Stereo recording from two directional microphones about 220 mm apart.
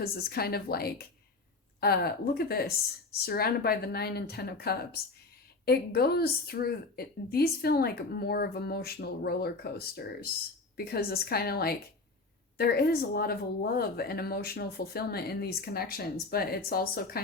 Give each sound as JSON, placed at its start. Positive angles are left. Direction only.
{"t": 0.0, "sound": "speech", "side_deg": 45}